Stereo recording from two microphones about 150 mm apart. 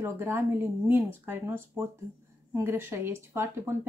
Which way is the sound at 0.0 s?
15° right (ahead or behind).